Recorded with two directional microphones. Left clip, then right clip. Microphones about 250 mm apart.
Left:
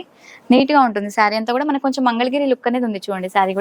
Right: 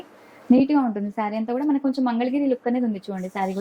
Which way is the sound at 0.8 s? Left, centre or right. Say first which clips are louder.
Left 10 dB; centre.